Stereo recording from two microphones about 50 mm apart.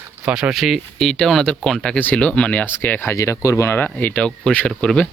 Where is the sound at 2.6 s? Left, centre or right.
Left.